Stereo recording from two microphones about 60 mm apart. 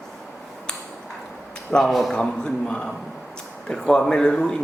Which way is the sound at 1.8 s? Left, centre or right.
Centre.